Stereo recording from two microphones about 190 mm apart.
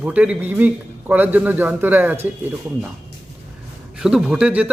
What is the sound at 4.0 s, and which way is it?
Speech, 5° right (ahead or behind).